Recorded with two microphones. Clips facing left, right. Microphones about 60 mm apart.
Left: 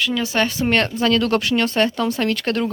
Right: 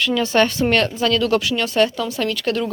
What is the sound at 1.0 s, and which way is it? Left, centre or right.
Speech, left.